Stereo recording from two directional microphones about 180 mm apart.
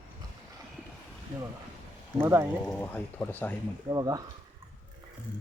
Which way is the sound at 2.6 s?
10° left (ahead or behind).